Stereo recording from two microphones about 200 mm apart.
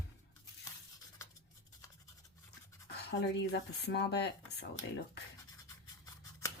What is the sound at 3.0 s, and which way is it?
Speech, 60° left (ahead or behind).